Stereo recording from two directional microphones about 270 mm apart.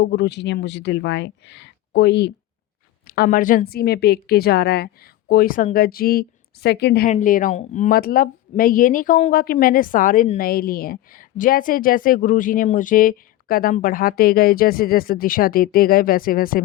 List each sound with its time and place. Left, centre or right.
0.0 s speech: left